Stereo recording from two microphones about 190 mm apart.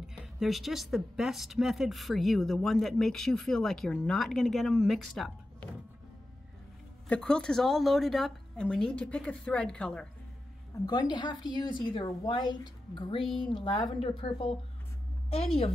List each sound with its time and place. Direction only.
0.0 s speech: 5° right (ahead or behind)
7.1 s speech: 5° left (ahead or behind)
10.9 s a woman's voice: 20° left (ahead or behind)